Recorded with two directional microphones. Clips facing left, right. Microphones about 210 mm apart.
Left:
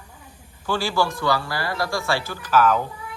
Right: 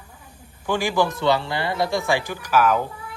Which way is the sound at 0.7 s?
15° right (ahead or behind).